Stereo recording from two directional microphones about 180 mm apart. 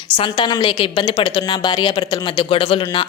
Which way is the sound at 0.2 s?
25° left (ahead or behind).